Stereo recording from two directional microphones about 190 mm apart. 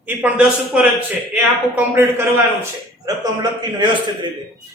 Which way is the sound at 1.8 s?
15° right (ahead or behind).